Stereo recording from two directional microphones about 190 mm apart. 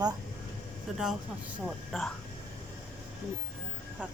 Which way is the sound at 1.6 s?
Centre (ahead or behind).